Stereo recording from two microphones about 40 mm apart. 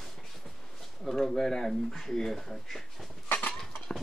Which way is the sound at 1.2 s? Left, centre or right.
Centre.